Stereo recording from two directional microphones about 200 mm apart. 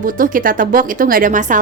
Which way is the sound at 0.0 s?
45° right (ahead or behind).